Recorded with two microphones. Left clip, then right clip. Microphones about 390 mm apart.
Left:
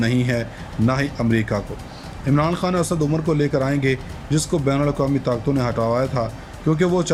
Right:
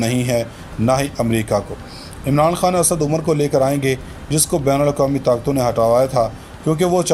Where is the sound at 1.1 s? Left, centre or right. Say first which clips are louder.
Right 3 dB; right.